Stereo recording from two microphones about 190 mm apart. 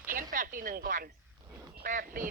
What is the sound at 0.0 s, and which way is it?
Speech, 45° right (ahead or behind).